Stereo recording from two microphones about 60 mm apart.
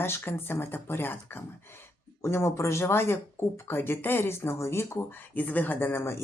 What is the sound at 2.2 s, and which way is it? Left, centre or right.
Speech, left.